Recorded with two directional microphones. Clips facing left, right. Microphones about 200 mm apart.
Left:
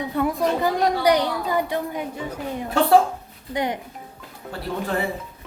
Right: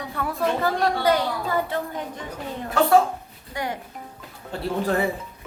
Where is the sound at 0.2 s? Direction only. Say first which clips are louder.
Left 3 dB; 15° left (ahead or behind).